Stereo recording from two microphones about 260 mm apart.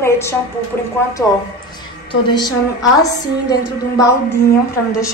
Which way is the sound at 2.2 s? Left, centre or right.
Centre.